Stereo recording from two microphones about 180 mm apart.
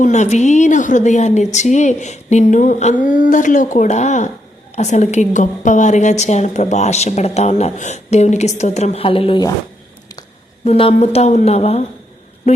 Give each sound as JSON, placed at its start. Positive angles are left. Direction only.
{"t": 0.0, "sound": "a woman's voice", "side_deg": 40}
{"t": 10.7, "sound": "a woman's voice", "side_deg": 35}